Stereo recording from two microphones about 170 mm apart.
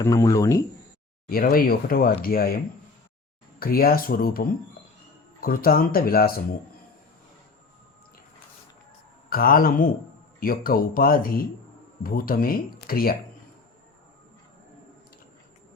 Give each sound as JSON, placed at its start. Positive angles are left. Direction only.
{"t": 0.0, "sound": "speech", "side_deg": 20}
{"t": 1.3, "sound": "speech", "side_deg": 60}
{"t": 3.6, "sound": "speech", "side_deg": 60}
{"t": 9.3, "sound": "speech", "side_deg": 60}